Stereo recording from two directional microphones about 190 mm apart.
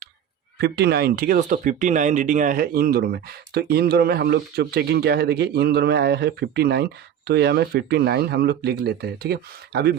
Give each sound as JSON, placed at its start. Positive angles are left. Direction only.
{"t": 0.6, "sound": "speech", "side_deg": -60}